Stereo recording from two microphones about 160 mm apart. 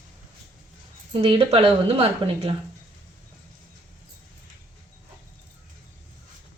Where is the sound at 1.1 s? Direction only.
35° right (ahead or behind).